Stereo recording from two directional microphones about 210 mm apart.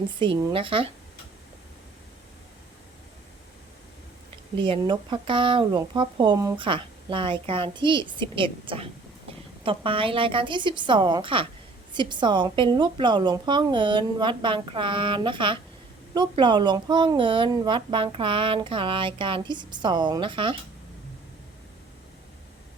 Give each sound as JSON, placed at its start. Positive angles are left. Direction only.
{"t": 0.2, "sound": "speech", "side_deg": -25}
{"t": 4.5, "sound": "speech", "side_deg": -25}